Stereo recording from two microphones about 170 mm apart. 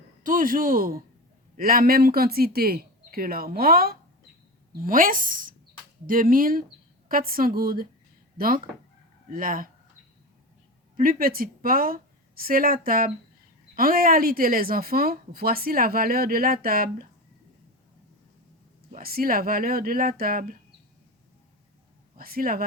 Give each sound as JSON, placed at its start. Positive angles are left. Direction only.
{"t": 0.2, "sound": "speech", "side_deg": -50}
{"t": 10.9, "sound": "a woman's voice", "side_deg": -55}
{"t": 18.9, "sound": "speech", "side_deg": -60}
{"t": 22.2, "sound": "speech", "side_deg": -60}